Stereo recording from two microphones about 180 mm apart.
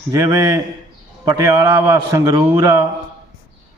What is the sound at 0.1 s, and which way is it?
A man's voice, 20° right (ahead or behind).